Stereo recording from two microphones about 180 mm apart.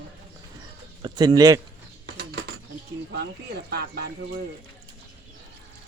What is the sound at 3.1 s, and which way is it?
Speech, 60° right (ahead or behind).